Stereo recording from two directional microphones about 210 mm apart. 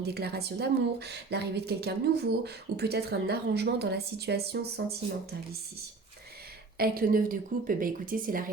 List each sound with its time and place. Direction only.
0.0 s a woman's voice: 50° right (ahead or behind)
6.7 s a woman's voice: 45° right (ahead or behind)